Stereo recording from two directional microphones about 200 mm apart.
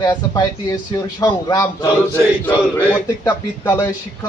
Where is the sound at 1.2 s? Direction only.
20° left (ahead or behind).